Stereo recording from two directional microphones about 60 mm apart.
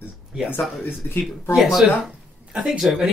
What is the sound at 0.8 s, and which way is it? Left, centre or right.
Speech, left.